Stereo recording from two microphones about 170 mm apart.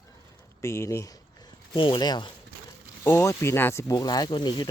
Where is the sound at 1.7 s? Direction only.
30° left (ahead or behind).